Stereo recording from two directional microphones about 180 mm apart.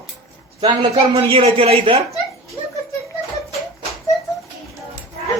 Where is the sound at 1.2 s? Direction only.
30° right (ahead or behind).